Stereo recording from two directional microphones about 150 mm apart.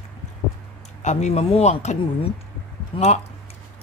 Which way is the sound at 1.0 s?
45° left (ahead or behind).